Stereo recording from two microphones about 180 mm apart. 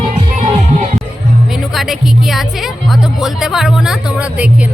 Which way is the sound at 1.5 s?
Centre (ahead or behind).